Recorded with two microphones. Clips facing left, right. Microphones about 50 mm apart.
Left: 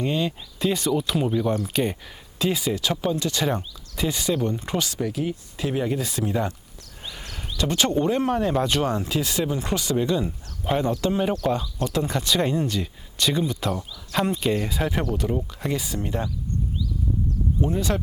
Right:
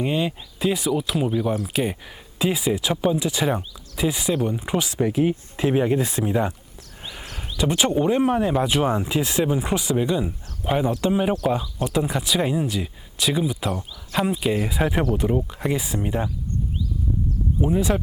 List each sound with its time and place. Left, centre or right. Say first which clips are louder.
0.0 s speech: right 1 dB; centre
6.2 s speech: right 3 dB; centre
17.6 s speech: right 4 dB; centre